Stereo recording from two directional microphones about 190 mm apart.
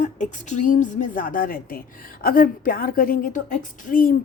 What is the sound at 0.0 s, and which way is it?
Speech, 40° left (ahead or behind).